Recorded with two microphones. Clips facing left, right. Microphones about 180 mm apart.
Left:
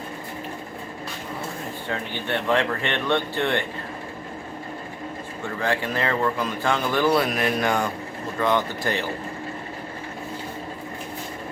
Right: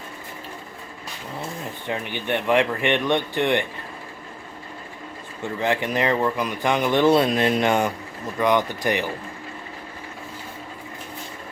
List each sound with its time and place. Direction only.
1.9 s speech: 15° right (ahead or behind)
5.5 s speech: 20° right (ahead or behind)